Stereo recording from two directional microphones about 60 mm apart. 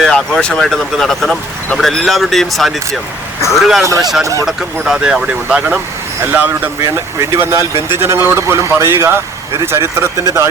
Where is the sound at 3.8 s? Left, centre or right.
Right.